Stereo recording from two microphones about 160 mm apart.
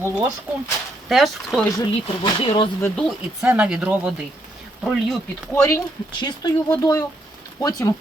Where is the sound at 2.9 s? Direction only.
Centre (ahead or behind).